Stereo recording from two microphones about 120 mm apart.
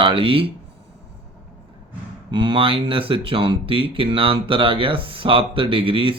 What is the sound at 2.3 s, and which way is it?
Speech, 45° right (ahead or behind).